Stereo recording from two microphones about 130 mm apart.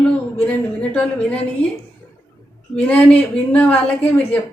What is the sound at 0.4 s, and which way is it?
Speech, 10° left (ahead or behind).